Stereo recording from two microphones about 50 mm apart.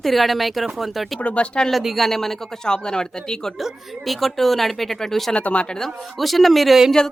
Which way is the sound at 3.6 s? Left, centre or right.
Centre.